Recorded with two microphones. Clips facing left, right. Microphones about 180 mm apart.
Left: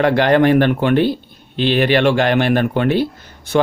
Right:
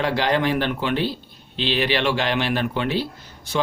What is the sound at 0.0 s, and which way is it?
Speech, 55° left (ahead or behind).